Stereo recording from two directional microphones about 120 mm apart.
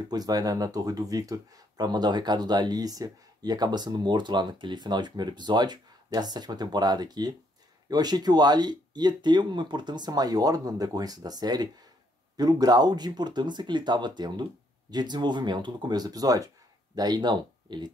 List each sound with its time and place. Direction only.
0.1 s speech: 30° right (ahead or behind)